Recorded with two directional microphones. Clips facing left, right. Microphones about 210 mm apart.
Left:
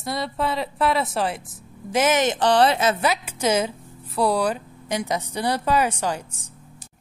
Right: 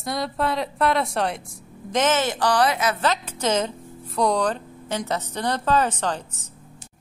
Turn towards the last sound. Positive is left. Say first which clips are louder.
# even
turn(degrees=10)  # may be behind; listen again after turning